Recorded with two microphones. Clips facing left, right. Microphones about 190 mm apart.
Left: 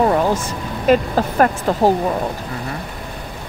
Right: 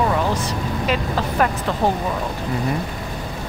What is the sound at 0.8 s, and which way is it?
Speech, 45° left (ahead or behind).